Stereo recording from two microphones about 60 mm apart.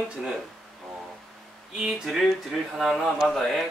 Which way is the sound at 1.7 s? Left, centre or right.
Centre.